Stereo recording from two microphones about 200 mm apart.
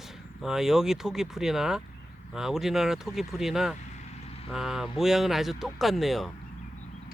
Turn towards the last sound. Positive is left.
turn(degrees=0)  # may be behind; listen again after turning